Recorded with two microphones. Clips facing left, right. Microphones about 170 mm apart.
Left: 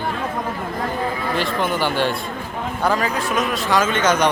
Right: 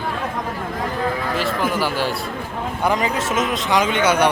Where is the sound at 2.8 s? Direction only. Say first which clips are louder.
Even; 20° right (ahead or behind).